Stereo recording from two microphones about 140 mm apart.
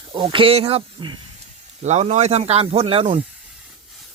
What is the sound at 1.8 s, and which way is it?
Speech, 55° right (ahead or behind).